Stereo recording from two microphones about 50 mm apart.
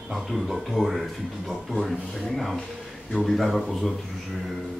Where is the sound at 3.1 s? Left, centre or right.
Centre.